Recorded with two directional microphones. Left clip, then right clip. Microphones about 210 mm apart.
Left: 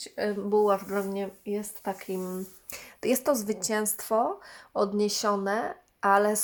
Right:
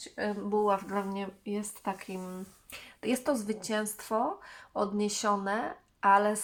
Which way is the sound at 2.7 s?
50° left (ahead or behind).